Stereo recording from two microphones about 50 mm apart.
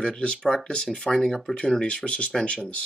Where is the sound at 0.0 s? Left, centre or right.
Centre.